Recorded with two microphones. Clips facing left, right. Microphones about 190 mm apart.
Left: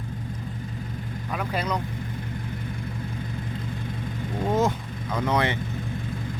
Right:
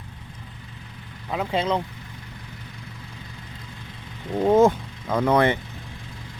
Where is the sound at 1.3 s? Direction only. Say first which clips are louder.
Right 5 dB; 25° right (ahead or behind).